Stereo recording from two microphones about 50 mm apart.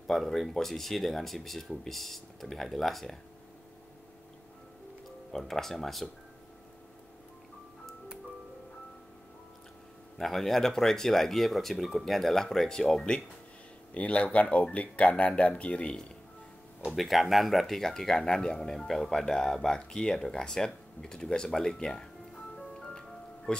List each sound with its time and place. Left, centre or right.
0.0 s speech: centre
5.3 s speech: centre
10.1 s speech: centre
13.9 s speech: left
16.8 s speech: centre
21.5 s music: centre